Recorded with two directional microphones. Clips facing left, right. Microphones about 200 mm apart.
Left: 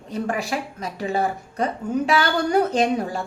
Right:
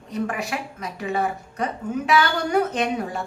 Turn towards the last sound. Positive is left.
turn(degrees=35)  # may be behind; listen again after turning